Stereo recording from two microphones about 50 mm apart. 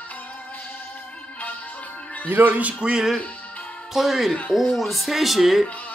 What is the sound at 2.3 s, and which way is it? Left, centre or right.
Speech, right.